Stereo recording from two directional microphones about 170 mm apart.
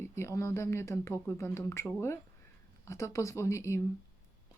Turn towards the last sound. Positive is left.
turn(degrees=15)  # may be behind; listen again after turning